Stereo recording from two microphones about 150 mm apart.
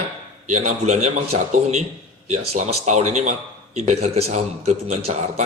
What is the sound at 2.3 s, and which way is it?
Speech, 50° right (ahead or behind).